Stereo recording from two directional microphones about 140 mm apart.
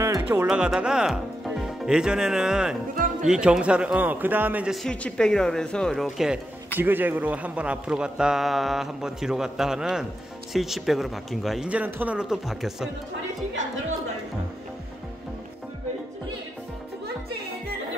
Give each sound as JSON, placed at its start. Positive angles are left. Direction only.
{"t": 0.0, "sound": "music", "side_deg": -20}
{"t": 0.5, "sound": "a man's voice", "side_deg": -5}
{"t": 4.8, "sound": "a man's voice", "side_deg": 5}
{"t": 6.8, "sound": "a man's voice", "side_deg": -15}